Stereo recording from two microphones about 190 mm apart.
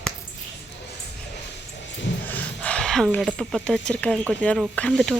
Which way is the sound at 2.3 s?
5° left (ahead or behind).